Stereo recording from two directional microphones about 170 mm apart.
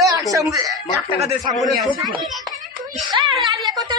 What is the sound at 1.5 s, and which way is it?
Speech, centre (ahead or behind).